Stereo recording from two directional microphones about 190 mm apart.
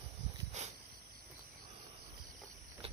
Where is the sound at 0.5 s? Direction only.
35° right (ahead or behind).